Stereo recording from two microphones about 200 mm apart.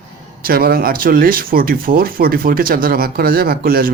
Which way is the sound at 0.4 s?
50° right (ahead or behind).